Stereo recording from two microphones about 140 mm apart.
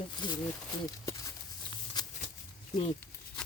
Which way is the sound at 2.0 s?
30° left (ahead or behind).